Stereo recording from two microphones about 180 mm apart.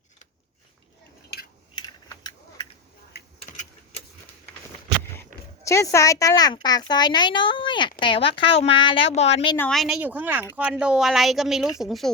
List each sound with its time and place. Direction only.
1.3 s a sound: 65° left (ahead or behind)
3.1 s typing: 65° left (ahead or behind)
5.6 s speech: 15° left (ahead or behind); by 9.6 s 30° left (ahead or behind)
9.6 s a woman's voice: 5° left (ahead or behind)